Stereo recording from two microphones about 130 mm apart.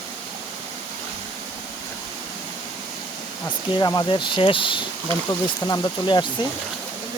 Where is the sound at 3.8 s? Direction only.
30° left (ahead or behind).